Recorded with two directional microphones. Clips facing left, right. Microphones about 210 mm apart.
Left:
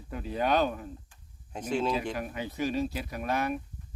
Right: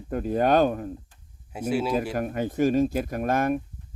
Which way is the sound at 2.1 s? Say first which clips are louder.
Right 8 dB; 50° right (ahead or behind).